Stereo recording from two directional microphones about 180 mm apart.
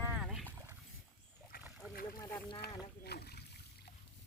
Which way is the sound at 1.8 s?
10° right (ahead or behind).